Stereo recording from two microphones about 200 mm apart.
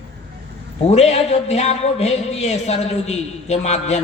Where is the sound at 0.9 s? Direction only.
30° left (ahead or behind).